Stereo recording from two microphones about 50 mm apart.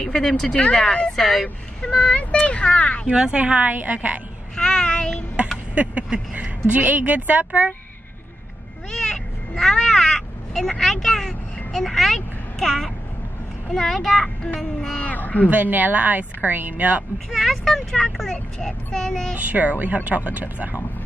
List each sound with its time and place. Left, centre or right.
0.0 s speech: centre
1.1 s speech: centre
1.4 s speech: centre
3.1 s speech: centre
4.6 s a child's voice: centre
6.3 s a woman's voice: right
8.9 s a child's voice: centre
15.0 s speech: left
15.5 s a woman's voice: right
17.3 s a child's voice: centre
19.3 s a woman's voice: right